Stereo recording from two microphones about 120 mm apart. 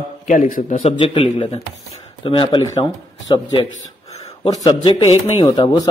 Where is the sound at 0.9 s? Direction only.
50° left (ahead or behind).